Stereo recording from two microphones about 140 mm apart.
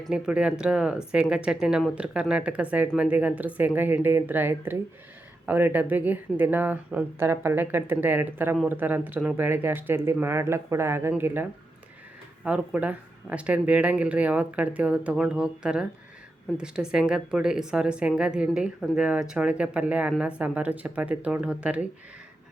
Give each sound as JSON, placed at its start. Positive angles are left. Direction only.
{"t": 0.1, "sound": "speech", "side_deg": -5}
{"t": 12.5, "sound": "speech", "side_deg": -10}